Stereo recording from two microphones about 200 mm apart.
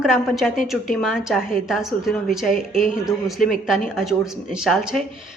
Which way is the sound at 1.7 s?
Centre (ahead or behind).